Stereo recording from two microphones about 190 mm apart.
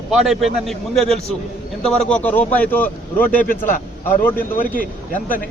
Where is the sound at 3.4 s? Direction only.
45° left (ahead or behind).